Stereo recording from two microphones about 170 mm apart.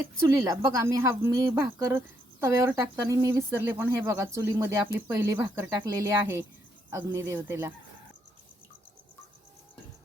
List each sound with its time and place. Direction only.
0.3 s speech: 20° right (ahead or behind)